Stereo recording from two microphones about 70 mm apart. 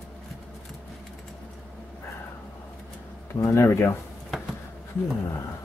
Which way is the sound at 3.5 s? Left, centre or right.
Left.